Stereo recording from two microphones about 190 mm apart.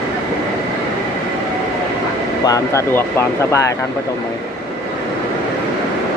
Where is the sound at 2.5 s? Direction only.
15° left (ahead or behind).